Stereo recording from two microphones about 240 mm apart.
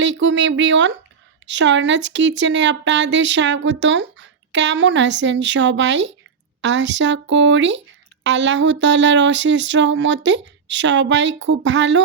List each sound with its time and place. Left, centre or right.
0.0 s speech: right